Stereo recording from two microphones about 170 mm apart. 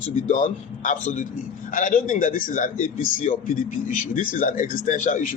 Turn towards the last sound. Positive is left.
turn(degrees=50)  # may be behind; listen again after turning